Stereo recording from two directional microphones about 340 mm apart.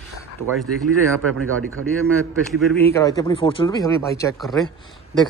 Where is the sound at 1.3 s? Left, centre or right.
Right.